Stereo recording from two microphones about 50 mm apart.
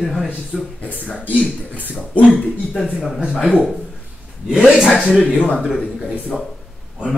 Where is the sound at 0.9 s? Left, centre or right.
Left.